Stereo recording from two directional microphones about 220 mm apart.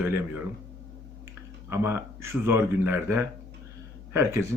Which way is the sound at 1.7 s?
10° right (ahead or behind).